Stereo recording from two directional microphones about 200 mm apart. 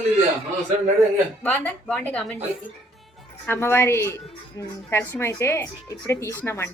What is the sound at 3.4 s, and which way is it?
A woman's voice, 10° left (ahead or behind).